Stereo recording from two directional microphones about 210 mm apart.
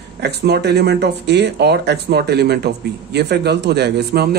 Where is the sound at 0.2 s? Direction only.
50° right (ahead or behind).